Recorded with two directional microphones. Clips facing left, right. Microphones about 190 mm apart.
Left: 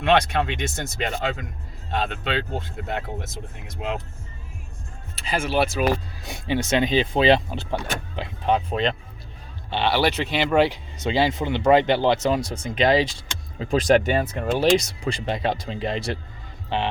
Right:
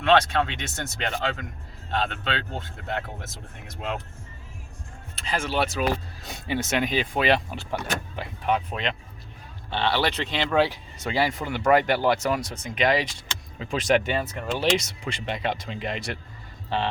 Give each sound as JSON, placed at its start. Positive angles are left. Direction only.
{"t": 0.0, "sound": "speech", "side_deg": 15}
{"t": 5.2, "sound": "speech", "side_deg": 10}
{"t": 9.6, "sound": "speech", "side_deg": 15}
{"t": 16.6, "sound": "speech", "side_deg": 15}